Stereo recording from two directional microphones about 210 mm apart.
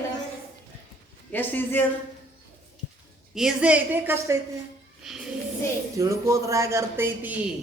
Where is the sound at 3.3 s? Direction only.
Centre (ahead or behind).